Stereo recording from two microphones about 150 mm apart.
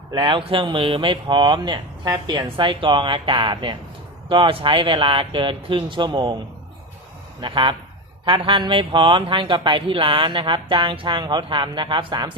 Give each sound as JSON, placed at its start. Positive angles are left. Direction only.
{"t": 0.1, "sound": "speech", "side_deg": -35}
{"t": 7.4, "sound": "speech", "side_deg": -35}